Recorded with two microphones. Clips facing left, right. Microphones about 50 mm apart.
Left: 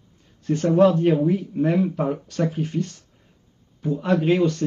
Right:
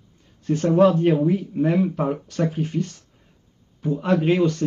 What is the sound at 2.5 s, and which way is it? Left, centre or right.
Speech, right.